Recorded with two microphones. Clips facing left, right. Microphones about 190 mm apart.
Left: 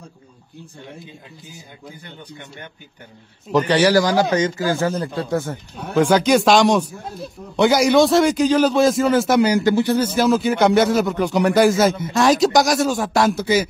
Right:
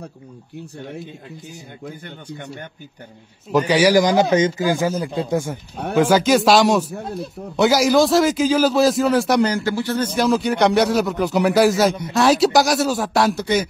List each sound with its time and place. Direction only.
3.5 s speech: 10° right (ahead or behind)
9.5 s speech: 20° left (ahead or behind); by 13.7 s 5° left (ahead or behind)